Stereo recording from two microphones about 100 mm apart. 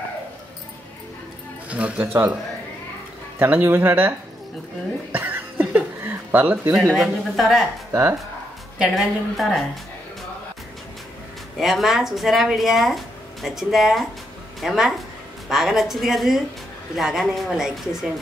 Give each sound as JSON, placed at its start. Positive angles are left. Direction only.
{"t": 1.7, "sound": "speech", "side_deg": -15}
{"t": 3.3, "sound": "a man's voice", "side_deg": -20}
{"t": 5.1, "sound": "a sound", "side_deg": -20}
{"t": 7.0, "sound": "speech", "side_deg": -5}
{"t": 7.9, "sound": "speech", "side_deg": -30}
{"t": 8.7, "sound": "speech", "side_deg": -5}
{"t": 11.6, "sound": "speech", "side_deg": 0}